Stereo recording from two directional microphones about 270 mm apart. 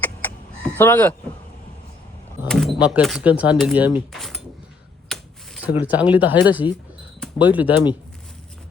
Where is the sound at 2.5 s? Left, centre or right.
Centre.